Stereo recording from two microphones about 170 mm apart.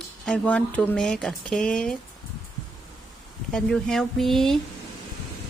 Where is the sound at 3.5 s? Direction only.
5° left (ahead or behind).